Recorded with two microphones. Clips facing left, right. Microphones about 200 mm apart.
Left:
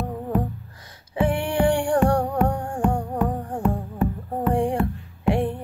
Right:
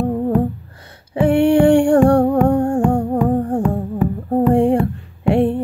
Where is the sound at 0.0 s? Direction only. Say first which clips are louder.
Right 11 dB; 50° right (ahead or behind).